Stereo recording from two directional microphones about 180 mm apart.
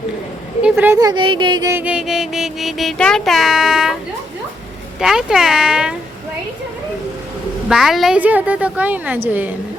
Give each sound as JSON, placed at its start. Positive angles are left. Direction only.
{"t": 0.6, "sound": "speech", "side_deg": -10}
{"t": 1.7, "sound": "music", "side_deg": -5}
{"t": 4.9, "sound": "music", "side_deg": 0}
{"t": 7.7, "sound": "a woman's voice", "side_deg": 0}